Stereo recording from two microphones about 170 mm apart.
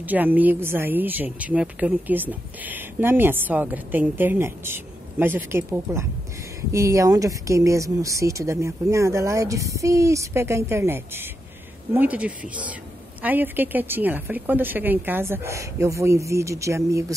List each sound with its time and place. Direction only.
0.0 s speech: 10° right (ahead or behind)